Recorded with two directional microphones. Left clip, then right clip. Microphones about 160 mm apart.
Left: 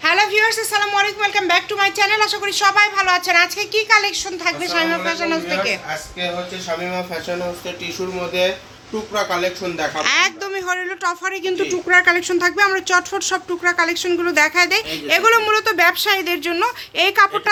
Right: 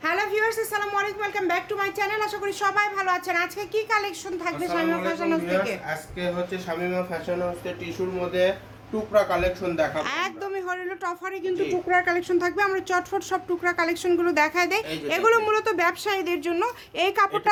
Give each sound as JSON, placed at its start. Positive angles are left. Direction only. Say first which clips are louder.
{"t": 0.0, "sound": "speech", "louder": "left 9 dB", "side_deg": 5}
{"t": 9.1, "sound": "speech", "louder": "left 1 dB", "side_deg": -15}
{"t": 10.0, "sound": "speech", "louder": "left 10 dB", "side_deg": 0}
{"t": 11.5, "sound": "speech", "louder": "left 7 dB", "side_deg": 20}